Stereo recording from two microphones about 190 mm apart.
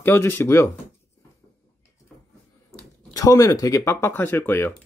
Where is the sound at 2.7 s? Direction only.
15° left (ahead or behind).